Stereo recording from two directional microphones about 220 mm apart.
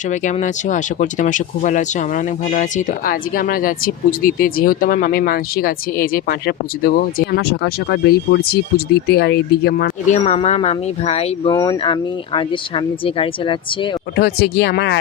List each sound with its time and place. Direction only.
0.1 s speech: 35° left (ahead or behind)
10.2 s speech: 30° left (ahead or behind)
11.5 s speech: 20° left (ahead or behind)
14.2 s speech: 45° left (ahead or behind)